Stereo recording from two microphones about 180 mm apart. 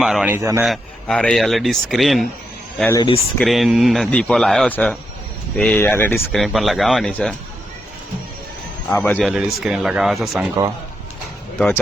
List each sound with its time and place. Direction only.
0.0 s speech: 5° right (ahead or behind)
0.3 s a man's voice: 15° right (ahead or behind)
0.6 s speech: centre (ahead or behind)
2.9 s speech: 25° left (ahead or behind)
3.3 s speech: centre (ahead or behind)
6.3 s speech: centre (ahead or behind)
8.9 s speech: 5° left (ahead or behind)
11.5 s speech: 10° left (ahead or behind)